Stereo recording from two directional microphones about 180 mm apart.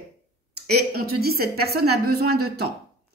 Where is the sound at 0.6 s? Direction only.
60° right (ahead or behind).